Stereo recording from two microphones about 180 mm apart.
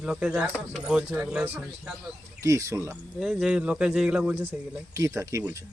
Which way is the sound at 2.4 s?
15° right (ahead or behind).